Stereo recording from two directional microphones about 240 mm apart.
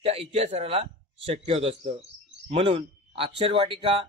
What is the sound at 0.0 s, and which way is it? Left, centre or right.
A man's voice, right.